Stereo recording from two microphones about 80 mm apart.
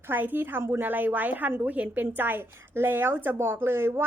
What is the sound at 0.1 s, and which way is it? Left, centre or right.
A woman's voice, right.